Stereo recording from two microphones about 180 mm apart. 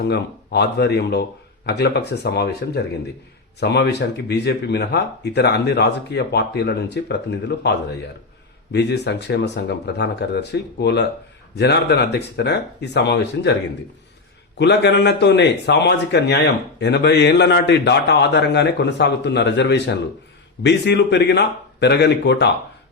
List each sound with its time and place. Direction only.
0.0 s a man's voice: 70° left (ahead or behind)
14.6 s a man's voice: 75° left (ahead or behind)